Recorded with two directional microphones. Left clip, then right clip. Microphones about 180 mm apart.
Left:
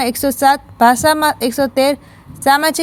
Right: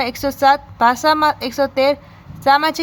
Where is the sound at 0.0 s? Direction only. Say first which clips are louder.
Left 2 dB; 30° left (ahead or behind).